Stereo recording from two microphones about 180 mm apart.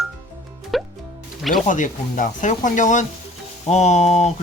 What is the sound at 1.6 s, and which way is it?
Speech, 45° left (ahead or behind).